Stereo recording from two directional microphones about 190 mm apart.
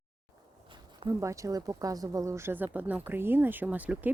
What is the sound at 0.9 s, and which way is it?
Speech, 20° right (ahead or behind).